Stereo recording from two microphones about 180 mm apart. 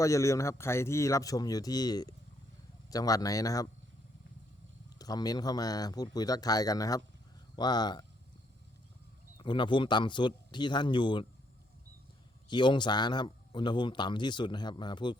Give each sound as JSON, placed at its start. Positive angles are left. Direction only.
{"t": 0.0, "sound": "a man's voice", "side_deg": 15}
{"t": 4.9, "sound": "a man's voice", "side_deg": 20}
{"t": 9.4, "sound": "a man's voice", "side_deg": 25}
{"t": 12.5, "sound": "a man's voice", "side_deg": 25}